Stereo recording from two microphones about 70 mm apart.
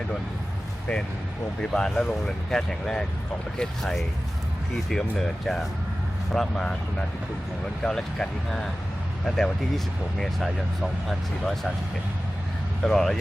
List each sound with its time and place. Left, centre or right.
1.7 s speech: centre
7.9 s speech: centre
12.8 s speech: centre